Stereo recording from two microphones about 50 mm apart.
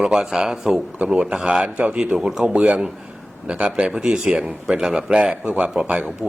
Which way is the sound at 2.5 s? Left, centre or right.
Right.